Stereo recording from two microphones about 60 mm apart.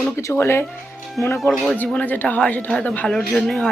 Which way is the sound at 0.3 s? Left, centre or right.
Left.